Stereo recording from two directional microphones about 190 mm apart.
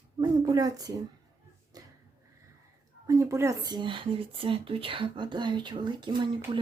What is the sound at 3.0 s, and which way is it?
Speech, 15° right (ahead or behind).